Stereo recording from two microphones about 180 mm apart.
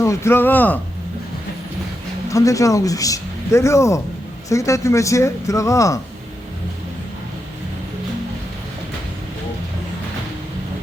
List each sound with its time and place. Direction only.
0.0 s speech: 15° left (ahead or behind)
2.3 s speech: 20° left (ahead or behind)